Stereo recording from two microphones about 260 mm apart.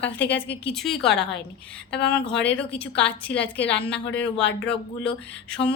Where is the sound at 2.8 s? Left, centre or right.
Centre.